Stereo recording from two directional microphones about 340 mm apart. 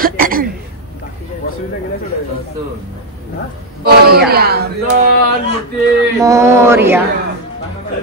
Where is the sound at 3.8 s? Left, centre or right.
Right.